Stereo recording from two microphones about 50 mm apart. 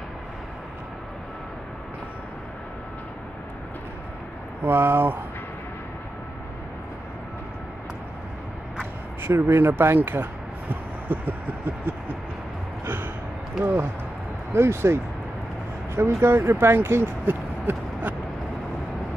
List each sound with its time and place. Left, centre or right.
4.6 s speech: right
9.2 s speech: right
10.7 s a sound: right
12.8 s gasp: right
13.6 s speech: right
14.5 s speech: right